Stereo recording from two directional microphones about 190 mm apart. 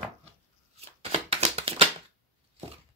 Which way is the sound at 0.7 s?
35° right (ahead or behind).